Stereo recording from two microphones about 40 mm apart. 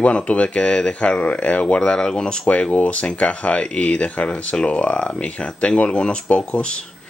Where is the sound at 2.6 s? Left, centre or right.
Left.